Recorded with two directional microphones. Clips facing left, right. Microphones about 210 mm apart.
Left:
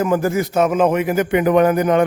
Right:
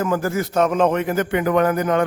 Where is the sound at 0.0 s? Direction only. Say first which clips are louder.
Left 4 dB; 15° left (ahead or behind).